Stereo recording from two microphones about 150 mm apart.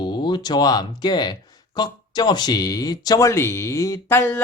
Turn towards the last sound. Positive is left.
turn(degrees=15)  # may be behind; listen again after turning